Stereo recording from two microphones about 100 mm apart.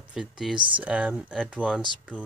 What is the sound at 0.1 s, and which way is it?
Speech, 5° right (ahead or behind).